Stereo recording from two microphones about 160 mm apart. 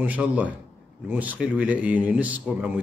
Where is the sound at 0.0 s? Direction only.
10° right (ahead or behind).